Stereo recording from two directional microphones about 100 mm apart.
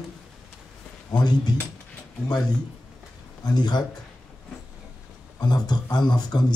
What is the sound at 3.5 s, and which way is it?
Speech, 45° left (ahead or behind).